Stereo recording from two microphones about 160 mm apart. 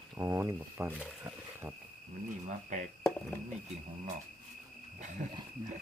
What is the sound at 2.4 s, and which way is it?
Speech, 50° right (ahead or behind).